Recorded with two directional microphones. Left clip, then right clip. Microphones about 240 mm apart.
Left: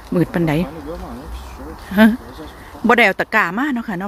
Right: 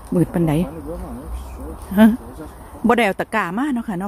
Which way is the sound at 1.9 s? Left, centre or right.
Centre.